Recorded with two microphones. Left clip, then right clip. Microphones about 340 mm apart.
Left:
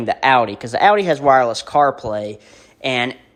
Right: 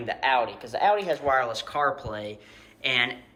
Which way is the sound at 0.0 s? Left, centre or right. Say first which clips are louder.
Left 10 dB; centre.